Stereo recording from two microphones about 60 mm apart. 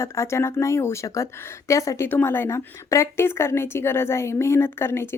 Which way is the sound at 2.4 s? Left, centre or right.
Left.